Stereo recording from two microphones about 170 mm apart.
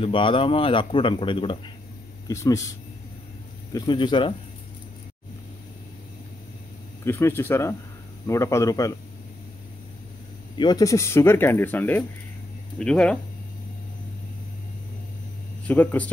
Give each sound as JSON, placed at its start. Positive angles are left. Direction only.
{"t": 0.0, "sound": "speech", "side_deg": 30}
{"t": 2.2, "sound": "speech", "side_deg": 20}
{"t": 3.7, "sound": "speech", "side_deg": 25}
{"t": 7.1, "sound": "speech", "side_deg": 15}
{"t": 10.6, "sound": "speech", "side_deg": 20}
{"t": 15.6, "sound": "speech", "side_deg": 10}